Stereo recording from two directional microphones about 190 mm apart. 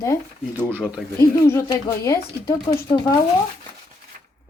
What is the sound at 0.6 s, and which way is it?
Speech, 10° right (ahead or behind).